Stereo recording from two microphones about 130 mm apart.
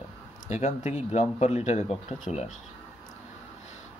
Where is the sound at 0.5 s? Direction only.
60° left (ahead or behind).